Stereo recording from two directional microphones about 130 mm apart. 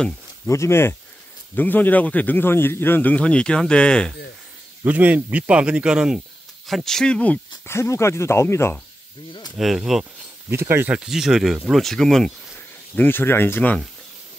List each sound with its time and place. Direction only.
0.5 s a man's voice: 20° left (ahead or behind)
4.8 s speech: 10° right (ahead or behind); by 8.7 s 20° left (ahead or behind)
9.6 s speech: centre (ahead or behind)
10.5 s speech: 20° right (ahead or behind)
11.0 s speech: 5° right (ahead or behind)
12.9 s a man's voice: 15° left (ahead or behind)